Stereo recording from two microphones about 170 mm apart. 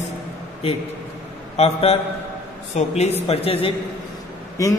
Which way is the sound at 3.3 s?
35° left (ahead or behind).